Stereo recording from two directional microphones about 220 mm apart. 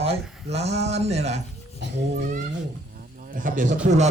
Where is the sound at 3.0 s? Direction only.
40° right (ahead or behind).